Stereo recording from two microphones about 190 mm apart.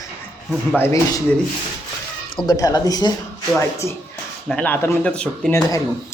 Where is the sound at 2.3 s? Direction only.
20° left (ahead or behind).